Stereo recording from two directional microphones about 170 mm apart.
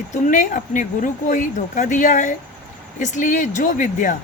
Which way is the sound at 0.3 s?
50° left (ahead or behind).